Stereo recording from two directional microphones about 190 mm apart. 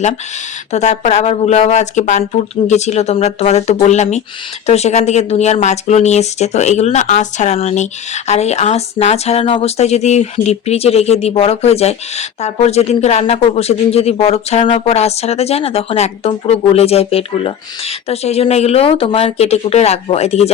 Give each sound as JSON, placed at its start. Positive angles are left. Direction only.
{"t": 0.7, "sound": "speech", "side_deg": 35}